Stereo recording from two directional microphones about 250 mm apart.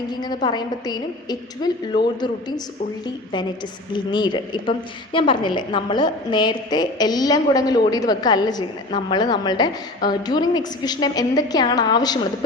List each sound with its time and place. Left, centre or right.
0.1 s a woman's voice: centre
3.9 s a woman's voice: centre